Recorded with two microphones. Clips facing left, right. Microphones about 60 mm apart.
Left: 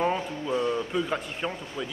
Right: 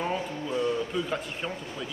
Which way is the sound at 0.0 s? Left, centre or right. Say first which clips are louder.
Left 3 dB; left.